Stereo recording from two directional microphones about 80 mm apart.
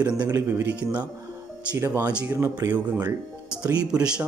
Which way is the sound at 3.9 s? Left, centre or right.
Centre.